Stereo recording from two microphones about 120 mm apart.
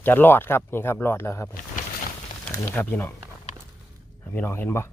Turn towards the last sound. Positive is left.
turn(degrees=20)  # may be behind; listen again after turning